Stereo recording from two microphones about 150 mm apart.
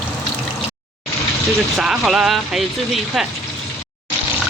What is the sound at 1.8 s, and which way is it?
Speech, 5° right (ahead or behind).